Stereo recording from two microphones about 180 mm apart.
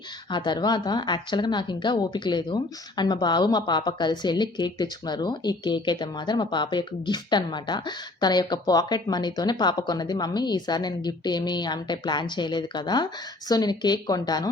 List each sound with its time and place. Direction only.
0.3 s speech: 25° left (ahead or behind)